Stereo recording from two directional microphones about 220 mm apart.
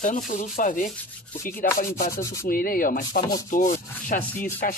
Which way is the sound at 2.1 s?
15° left (ahead or behind).